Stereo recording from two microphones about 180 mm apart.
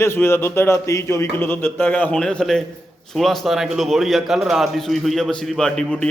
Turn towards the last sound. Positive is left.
turn(degrees=5)  # may be behind; listen again after turning